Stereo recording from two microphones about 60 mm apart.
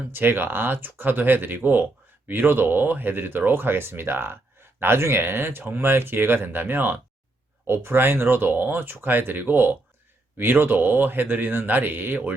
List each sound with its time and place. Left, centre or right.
0.1 s speech: right